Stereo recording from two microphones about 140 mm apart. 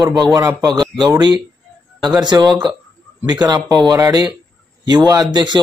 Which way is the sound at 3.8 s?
25° right (ahead or behind).